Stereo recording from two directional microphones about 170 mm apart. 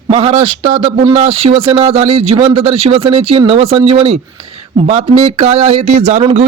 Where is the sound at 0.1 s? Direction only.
35° right (ahead or behind).